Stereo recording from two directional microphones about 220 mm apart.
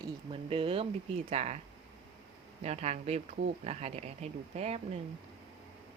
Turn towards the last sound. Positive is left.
turn(degrees=-30)  # may be behind; listen again after turning